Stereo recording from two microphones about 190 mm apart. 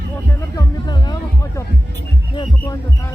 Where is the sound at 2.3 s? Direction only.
20° left (ahead or behind).